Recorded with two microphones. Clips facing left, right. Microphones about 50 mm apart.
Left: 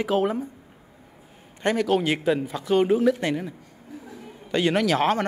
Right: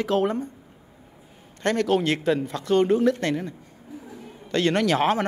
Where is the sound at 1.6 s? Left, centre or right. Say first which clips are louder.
Even; centre.